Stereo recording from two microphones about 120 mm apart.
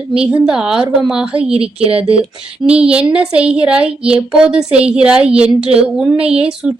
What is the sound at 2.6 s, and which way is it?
A woman's voice, 10° right (ahead or behind).